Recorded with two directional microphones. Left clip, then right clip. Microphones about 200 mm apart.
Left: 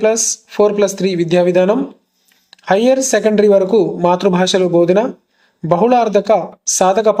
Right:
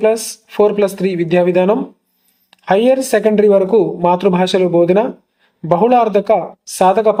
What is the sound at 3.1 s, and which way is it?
Speech, 5° left (ahead or behind).